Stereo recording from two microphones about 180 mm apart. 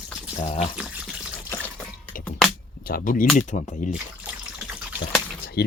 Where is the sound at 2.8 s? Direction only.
50° left (ahead or behind).